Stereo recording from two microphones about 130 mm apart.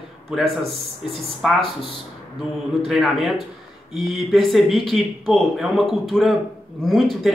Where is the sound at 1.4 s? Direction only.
Centre (ahead or behind).